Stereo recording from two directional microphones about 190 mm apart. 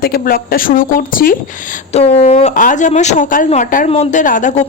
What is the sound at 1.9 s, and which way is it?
Speech, 35° left (ahead or behind).